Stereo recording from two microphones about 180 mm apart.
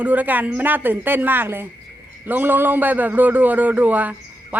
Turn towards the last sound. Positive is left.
turn(degrees=-10)  # may be behind; listen again after turning